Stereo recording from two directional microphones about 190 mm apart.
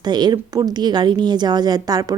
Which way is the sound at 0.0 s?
20° right (ahead or behind).